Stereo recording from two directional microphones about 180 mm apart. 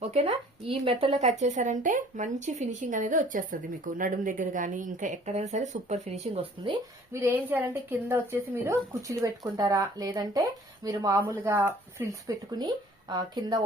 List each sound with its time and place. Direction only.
0.0 s speech: 35° right (ahead or behind)
7.1 s a woman's voice: 15° right (ahead or behind)